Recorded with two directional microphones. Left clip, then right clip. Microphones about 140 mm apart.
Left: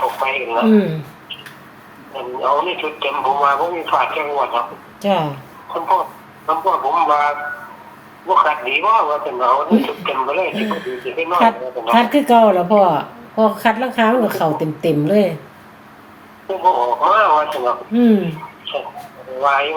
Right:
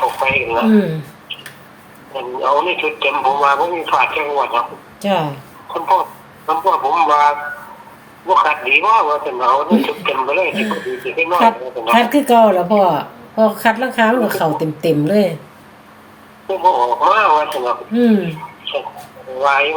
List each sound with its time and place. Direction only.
0.0 s radio: 55° right (ahead or behind)
0.7 s a man's voice: 35° right (ahead or behind)
2.1 s speech: 55° right (ahead or behind)
5.0 s a man's voice: 35° right (ahead or behind)
5.7 s a man's voice: 55° right (ahead or behind); by 15.4 s 30° right (ahead or behind)
16.5 s speech: 50° right (ahead or behind)
17.9 s a man's voice: 35° right (ahead or behind)
19.4 s speech: 50° right (ahead or behind)